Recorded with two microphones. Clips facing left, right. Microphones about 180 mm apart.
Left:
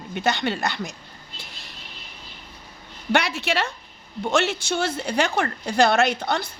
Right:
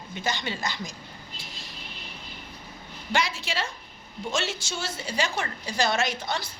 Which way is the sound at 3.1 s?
65° left (ahead or behind).